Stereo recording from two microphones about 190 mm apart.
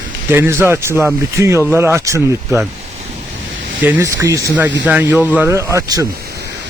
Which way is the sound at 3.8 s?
15° right (ahead or behind).